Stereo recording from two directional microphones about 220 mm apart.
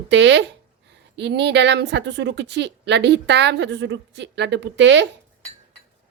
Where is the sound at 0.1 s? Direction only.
55° right (ahead or behind).